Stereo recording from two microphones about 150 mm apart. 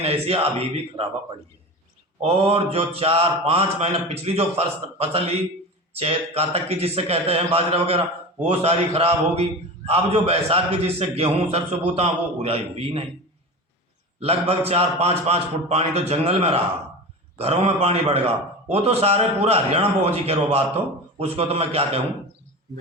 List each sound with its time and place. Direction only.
0.0 s speech: 40° right (ahead or behind)
2.2 s a man's voice: 40° right (ahead or behind)
14.2 s a man's voice: 40° right (ahead or behind)